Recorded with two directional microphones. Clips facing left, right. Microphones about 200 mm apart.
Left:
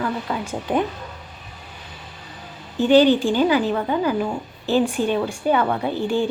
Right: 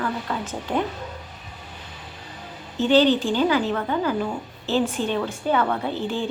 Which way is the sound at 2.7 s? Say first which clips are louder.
Left 3 dB; 15° left (ahead or behind).